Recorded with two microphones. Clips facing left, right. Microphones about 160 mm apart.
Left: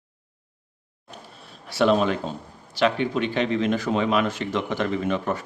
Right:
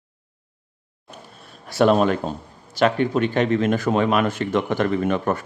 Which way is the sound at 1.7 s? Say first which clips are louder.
Right 3 dB; 45° right (ahead or behind).